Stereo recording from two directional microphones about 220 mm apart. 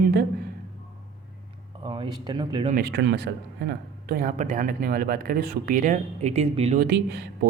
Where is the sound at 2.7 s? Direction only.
45° right (ahead or behind); by 6.8 s 30° right (ahead or behind).